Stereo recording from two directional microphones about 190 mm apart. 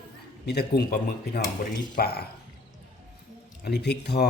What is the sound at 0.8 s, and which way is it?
A man's voice, 55° left (ahead or behind).